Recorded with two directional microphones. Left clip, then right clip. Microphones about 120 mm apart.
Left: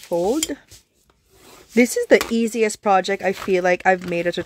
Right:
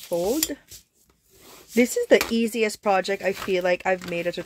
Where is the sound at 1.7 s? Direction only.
35° left (ahead or behind).